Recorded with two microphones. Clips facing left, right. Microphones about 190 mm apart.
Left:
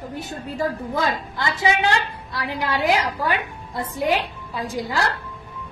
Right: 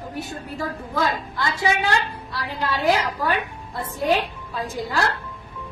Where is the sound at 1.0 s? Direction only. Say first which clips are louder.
Right 2 dB; 20° left (ahead or behind).